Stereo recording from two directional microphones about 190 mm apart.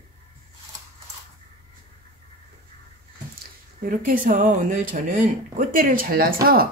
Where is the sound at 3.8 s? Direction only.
50° right (ahead or behind).